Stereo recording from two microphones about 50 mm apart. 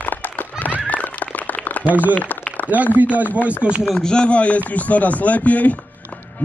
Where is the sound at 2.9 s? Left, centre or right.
Right.